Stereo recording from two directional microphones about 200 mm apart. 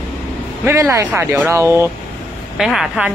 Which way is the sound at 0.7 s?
15° right (ahead or behind).